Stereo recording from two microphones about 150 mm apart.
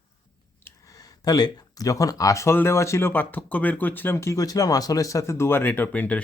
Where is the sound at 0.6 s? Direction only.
25° left (ahead or behind).